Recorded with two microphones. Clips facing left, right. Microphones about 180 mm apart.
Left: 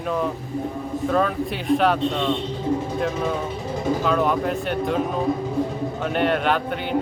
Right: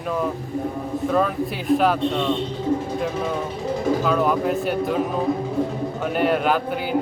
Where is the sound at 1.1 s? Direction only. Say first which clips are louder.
Even; 5° right (ahead or behind).